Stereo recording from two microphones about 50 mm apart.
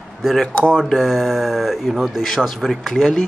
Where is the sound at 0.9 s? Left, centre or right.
Centre.